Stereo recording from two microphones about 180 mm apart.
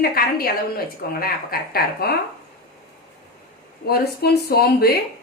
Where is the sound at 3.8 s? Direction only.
60° left (ahead or behind).